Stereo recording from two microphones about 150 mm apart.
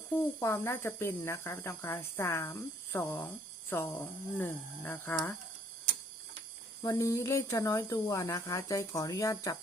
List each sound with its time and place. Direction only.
0.1 s speech: 15° left (ahead or behind)
6.8 s speech: 20° left (ahead or behind)